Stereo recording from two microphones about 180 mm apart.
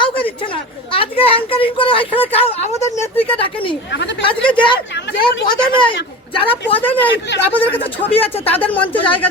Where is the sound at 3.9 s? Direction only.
75° left (ahead or behind).